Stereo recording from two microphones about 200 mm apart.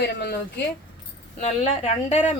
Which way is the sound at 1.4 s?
35° left (ahead or behind).